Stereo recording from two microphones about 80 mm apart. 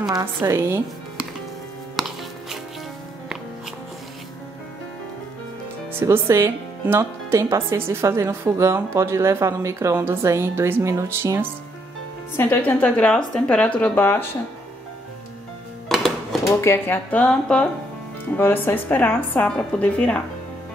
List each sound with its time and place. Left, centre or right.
0.2 s a woman's voice: right
2.0 s music: centre
5.9 s speech: right
12.4 s speech: left
15.9 s music: centre
16.4 s speech: left; by 17.6 s centre
18.3 s speech: left
19.4 s a woman's voice: centre